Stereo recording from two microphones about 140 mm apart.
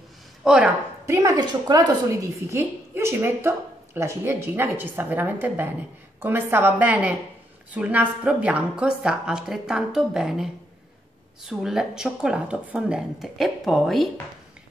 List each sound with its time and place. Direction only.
0.4 s speech: 5° right (ahead or behind)
1.0 s a woman's voice: 20° right (ahead or behind)
2.5 s a woman's voice: 15° right (ahead or behind); by 14.0 s centre (ahead or behind)